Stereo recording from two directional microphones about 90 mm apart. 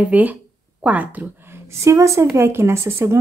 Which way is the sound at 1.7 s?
35° right (ahead or behind).